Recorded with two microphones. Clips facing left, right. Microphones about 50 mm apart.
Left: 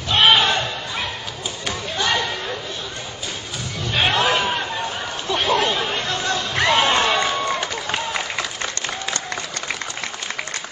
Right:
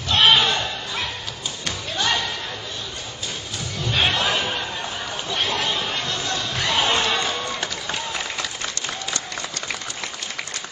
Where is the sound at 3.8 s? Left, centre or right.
Centre.